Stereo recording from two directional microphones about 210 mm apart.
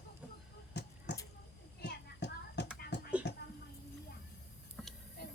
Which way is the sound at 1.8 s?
55° left (ahead or behind).